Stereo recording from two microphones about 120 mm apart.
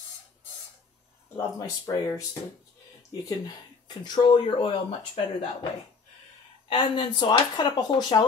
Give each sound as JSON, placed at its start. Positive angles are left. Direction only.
{"t": 1.3, "sound": "speech", "side_deg": 30}
{"t": 6.7, "sound": "speech", "side_deg": 40}